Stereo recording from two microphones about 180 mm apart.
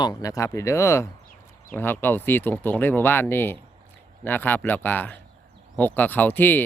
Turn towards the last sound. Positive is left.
turn(degrees=10)  # may be behind; listen again after turning